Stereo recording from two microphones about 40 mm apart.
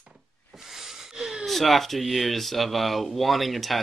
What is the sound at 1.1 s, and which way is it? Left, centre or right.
Gasp, centre.